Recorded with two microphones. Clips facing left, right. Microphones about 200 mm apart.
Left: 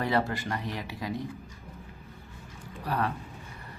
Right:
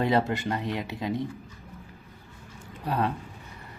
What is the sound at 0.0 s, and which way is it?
Speech, 20° right (ahead or behind).